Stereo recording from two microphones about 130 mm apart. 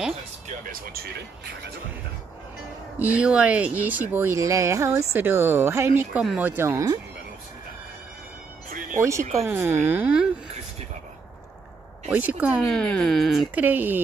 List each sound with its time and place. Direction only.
3.0 s speech: 10° right (ahead or behind)
8.6 s music: 90° right
9.4 s speech: 20° right (ahead or behind)
12.1 s speech: 10° right (ahead or behind)
12.6 s speech: 5° left (ahead or behind)
13.6 s speech: 15° right (ahead or behind)